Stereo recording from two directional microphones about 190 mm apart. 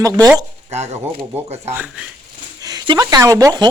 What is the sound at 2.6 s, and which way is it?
Speech, 20° right (ahead or behind).